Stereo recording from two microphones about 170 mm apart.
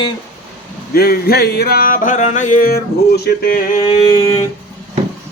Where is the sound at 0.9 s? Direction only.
65° left (ahead or behind).